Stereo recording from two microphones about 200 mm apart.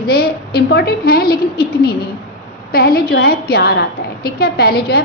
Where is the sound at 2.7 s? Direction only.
50° left (ahead or behind).